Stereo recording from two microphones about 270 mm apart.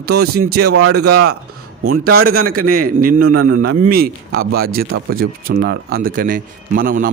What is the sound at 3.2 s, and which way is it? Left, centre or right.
Speech, right.